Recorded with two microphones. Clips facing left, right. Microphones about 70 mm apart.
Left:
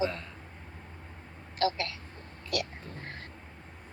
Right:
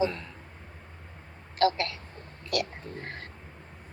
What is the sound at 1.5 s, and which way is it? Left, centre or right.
Speech, right.